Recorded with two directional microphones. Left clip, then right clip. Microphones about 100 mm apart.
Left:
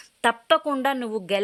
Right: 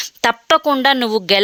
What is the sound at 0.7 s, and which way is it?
Speech, 25° right (ahead or behind).